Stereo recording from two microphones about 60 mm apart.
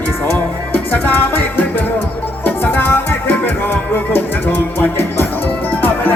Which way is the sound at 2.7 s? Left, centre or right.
Left.